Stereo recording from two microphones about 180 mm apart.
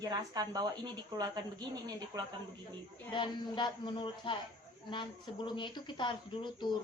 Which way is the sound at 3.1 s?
25° left (ahead or behind).